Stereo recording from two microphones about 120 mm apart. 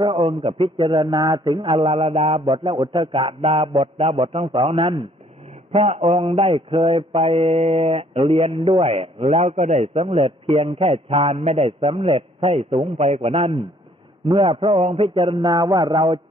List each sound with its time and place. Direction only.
0.0 s mantra: 40° right (ahead or behind)
5.7 s mantra: 60° right (ahead or behind)
11.8 s mantra: 45° right (ahead or behind)
12.9 s a man's voice: 60° right (ahead or behind)
14.2 s a sound: 40° right (ahead or behind)
14.5 s mantra: 50° right (ahead or behind)
15.5 s a sound: 30° right (ahead or behind)